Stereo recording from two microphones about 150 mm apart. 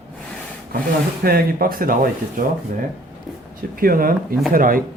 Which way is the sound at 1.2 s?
90° right.